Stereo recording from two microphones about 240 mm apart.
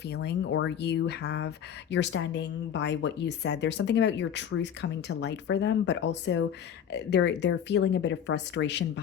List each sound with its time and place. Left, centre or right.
0.0 s speech: left